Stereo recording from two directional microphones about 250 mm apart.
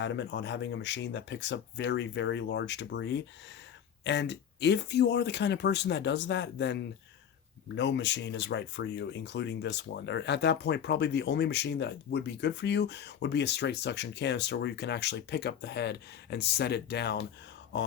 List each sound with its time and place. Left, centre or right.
0.0 s speech: left